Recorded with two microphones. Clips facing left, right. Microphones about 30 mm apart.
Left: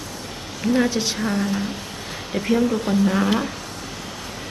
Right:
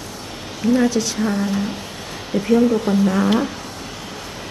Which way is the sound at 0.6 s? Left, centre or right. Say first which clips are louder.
Right 3 dB; centre.